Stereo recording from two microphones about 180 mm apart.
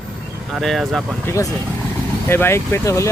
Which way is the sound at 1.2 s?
15° left (ahead or behind).